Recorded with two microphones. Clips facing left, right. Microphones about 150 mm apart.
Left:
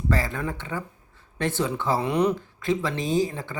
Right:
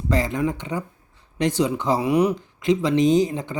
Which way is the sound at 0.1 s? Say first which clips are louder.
Right 6 dB; 20° right (ahead or behind).